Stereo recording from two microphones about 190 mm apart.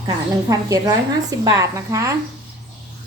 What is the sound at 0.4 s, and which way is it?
A woman's voice, 20° right (ahead or behind).